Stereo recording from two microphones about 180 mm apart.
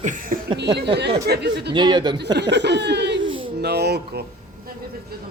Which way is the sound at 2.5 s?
70° right (ahead or behind).